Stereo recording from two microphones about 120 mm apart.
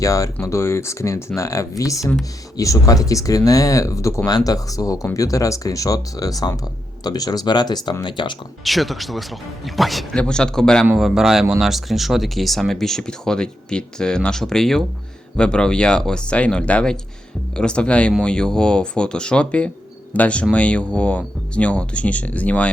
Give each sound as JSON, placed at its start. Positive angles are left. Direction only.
{"t": 0.0, "sound": "speech", "side_deg": 30}
{"t": 8.6, "sound": "speech", "side_deg": 0}